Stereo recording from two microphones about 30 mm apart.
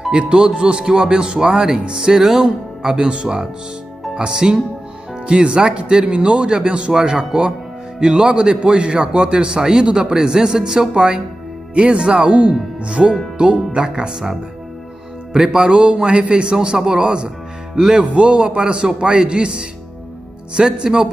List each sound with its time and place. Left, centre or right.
0.1 s speech: right
4.3 s speech: right
6.9 s speech: right
12.3 s speech: right
15.4 s speech: right
15.7 s speech: right
16.7 s speech: right
18.0 s speech: right